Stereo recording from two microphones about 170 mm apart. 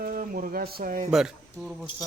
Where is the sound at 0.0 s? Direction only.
55° right (ahead or behind).